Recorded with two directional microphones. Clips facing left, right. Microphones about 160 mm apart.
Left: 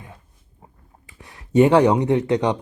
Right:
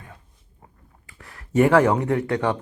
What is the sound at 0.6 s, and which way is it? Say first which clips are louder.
Speech: left 2 dB; 20° left (ahead or behind).